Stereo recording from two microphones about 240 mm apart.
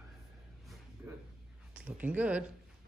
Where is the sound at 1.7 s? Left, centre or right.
Centre.